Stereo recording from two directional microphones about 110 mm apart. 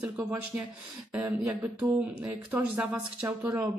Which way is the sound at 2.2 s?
15° right (ahead or behind).